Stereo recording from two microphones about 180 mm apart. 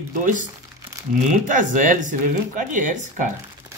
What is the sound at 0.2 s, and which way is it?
Speech, 45° right (ahead or behind).